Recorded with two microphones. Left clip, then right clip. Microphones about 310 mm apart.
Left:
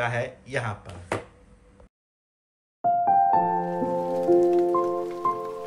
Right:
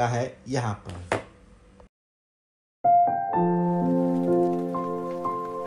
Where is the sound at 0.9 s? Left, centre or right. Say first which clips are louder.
Right 2 dB; centre.